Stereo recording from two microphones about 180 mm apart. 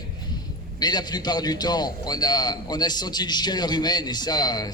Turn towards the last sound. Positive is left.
turn(degrees=20)  # may be behind; listen again after turning